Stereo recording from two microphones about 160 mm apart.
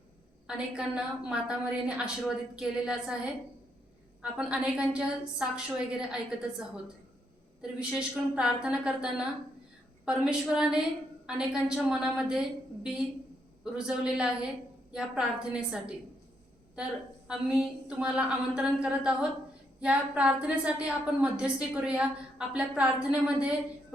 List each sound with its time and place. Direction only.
0.4 s a woman's voice: 5° right (ahead or behind)
4.2 s a woman's voice: 5° right (ahead or behind)
7.6 s a woman's voice: 5° right (ahead or behind)
17.2 s a woman's voice: 5° right (ahead or behind)